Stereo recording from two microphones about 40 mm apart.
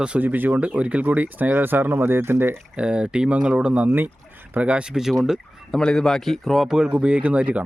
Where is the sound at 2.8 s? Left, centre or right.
Right.